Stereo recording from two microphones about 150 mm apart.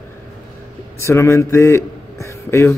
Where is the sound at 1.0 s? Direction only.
20° left (ahead or behind).